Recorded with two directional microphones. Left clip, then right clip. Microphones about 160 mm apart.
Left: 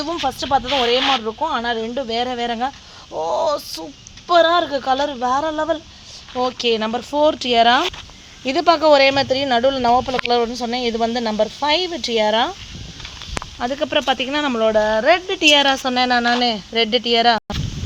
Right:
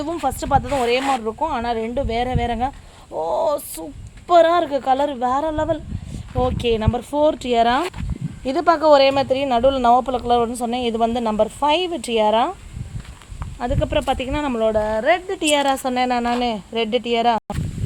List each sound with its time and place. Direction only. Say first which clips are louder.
0.0 s speech: left 1 dB; 10° right (ahead or behind)
9.9 s speech: even; 25° right (ahead or behind)
13.6 s speech: left 1 dB; centre (ahead or behind)